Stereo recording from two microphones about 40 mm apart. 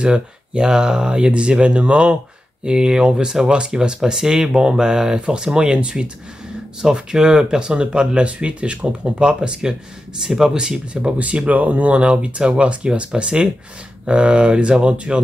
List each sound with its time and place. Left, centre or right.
0.0 s speech: right
2.6 s speech: centre
10.9 s speech: right